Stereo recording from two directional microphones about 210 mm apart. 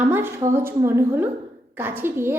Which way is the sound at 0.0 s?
10° right (ahead or behind).